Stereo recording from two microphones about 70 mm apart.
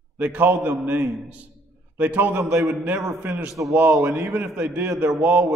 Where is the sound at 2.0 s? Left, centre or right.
Right.